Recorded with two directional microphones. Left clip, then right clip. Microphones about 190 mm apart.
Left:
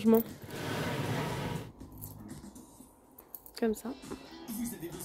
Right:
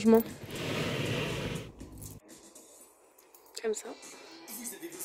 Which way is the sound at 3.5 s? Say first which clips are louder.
Left 1 dB; 5° right (ahead or behind).